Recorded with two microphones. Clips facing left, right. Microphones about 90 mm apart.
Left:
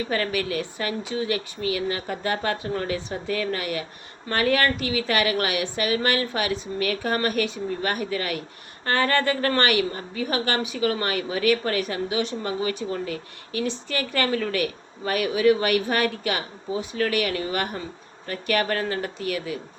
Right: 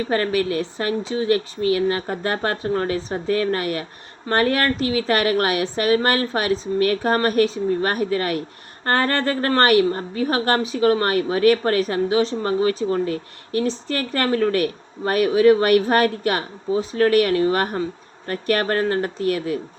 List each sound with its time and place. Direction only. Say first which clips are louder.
0.1 s speech: right 7 dB; 35° right (ahead or behind)